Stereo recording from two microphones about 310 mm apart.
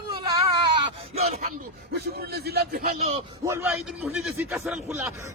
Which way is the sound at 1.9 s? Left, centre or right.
Right.